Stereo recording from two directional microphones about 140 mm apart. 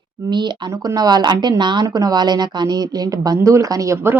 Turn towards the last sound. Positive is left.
turn(degrees=-20)  # may be behind; listen again after turning